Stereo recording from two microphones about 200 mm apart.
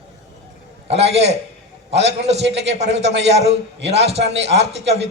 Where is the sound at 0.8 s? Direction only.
30° right (ahead or behind).